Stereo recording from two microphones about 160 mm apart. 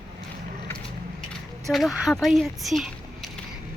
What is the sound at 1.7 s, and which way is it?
Speech, centre (ahead or behind).